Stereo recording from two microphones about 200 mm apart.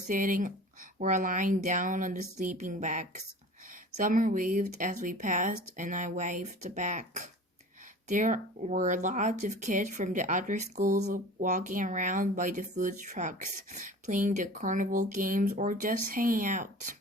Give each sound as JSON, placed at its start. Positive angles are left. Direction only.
{"t": 0.1, "sound": "speech", "side_deg": -40}